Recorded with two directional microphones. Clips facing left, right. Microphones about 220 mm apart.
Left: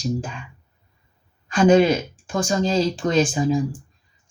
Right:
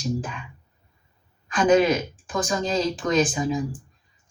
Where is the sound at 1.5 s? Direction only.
30° left (ahead or behind).